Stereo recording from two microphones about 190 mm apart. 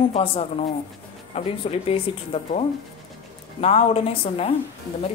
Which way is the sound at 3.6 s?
30° left (ahead or behind).